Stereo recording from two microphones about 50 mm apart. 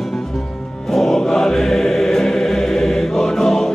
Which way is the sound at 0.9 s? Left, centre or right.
Centre.